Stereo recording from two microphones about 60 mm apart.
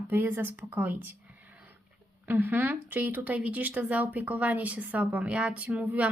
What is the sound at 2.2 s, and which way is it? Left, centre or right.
Speech, right.